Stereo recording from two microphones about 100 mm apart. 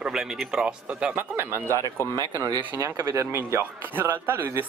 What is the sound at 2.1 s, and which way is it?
Speech, 35° right (ahead or behind).